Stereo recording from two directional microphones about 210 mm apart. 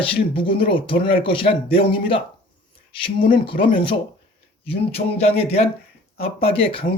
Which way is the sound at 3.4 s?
25° left (ahead or behind).